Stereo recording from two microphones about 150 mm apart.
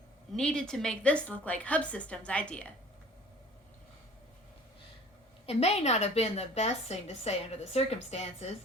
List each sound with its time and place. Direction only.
0.3 s a woman's voice: 5° left (ahead or behind)
5.5 s a woman's voice: 45° left (ahead or behind)